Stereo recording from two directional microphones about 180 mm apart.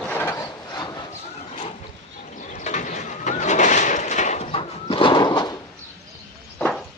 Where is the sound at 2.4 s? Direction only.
40° left (ahead or behind); by 5.5 s 25° left (ahead or behind).